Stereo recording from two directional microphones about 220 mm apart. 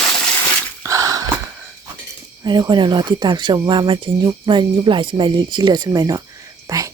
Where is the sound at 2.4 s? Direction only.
20° right (ahead or behind).